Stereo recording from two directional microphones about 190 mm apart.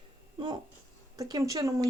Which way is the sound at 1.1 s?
20° right (ahead or behind).